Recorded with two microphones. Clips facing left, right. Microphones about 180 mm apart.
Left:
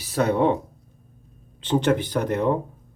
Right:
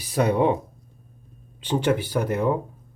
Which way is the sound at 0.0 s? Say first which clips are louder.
Even; 15° right (ahead or behind).